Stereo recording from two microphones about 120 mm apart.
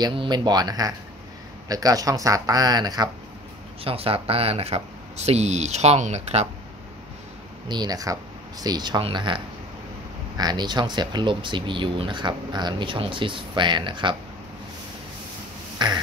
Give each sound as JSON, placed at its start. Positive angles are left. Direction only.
{"t": 0.0, "sound": "speech", "side_deg": -40}
{"t": 3.8, "sound": "speech", "side_deg": -50}
{"t": 7.6, "sound": "speech", "side_deg": -35}
{"t": 15.8, "sound": "speech", "side_deg": -40}